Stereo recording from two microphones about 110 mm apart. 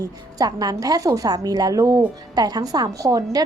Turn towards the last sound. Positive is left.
turn(degrees=-35)  # may be behind; listen again after turning